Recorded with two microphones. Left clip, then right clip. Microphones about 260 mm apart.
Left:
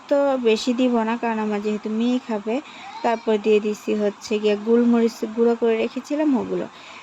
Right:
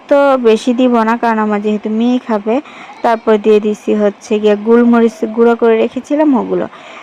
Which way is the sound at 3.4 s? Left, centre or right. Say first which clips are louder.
Right 7 dB; right.